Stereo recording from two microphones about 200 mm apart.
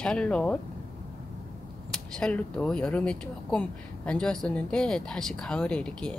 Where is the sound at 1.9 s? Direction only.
5° left (ahead or behind).